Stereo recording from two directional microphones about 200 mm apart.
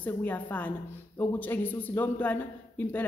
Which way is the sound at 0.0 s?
10° left (ahead or behind).